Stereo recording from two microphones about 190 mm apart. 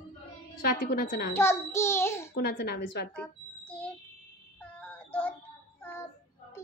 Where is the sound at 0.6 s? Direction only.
45° left (ahead or behind).